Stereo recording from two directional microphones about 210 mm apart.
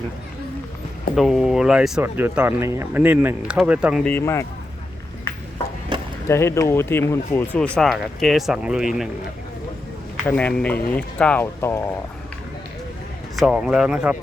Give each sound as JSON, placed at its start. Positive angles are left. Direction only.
{"t": 1.1, "sound": "speech", "side_deg": 0}
{"t": 4.1, "sound": "speech", "side_deg": 15}
{"t": 5.9, "sound": "chop", "side_deg": -20}
{"t": 6.2, "sound": "speech", "side_deg": 10}
{"t": 10.2, "sound": "speech", "side_deg": 5}
{"t": 13.3, "sound": "speech", "side_deg": 0}